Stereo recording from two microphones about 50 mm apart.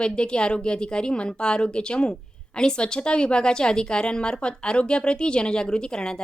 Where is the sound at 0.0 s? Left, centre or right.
Centre.